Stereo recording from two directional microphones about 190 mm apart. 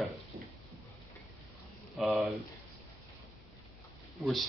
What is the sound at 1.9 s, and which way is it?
Speech, centre (ahead or behind).